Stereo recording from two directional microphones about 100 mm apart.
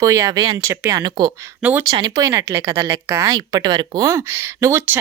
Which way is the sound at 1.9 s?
50° right (ahead or behind).